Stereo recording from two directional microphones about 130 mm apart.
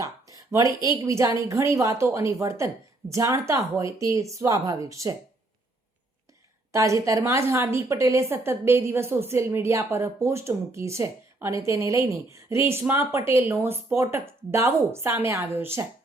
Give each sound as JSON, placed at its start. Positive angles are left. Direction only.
{"t": 0.0, "sound": "a woman's voice", "side_deg": -25}
{"t": 6.7, "sound": "a woman's voice", "side_deg": -25}